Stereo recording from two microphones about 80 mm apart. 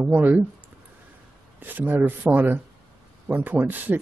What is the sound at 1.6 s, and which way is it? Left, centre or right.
Speech, right.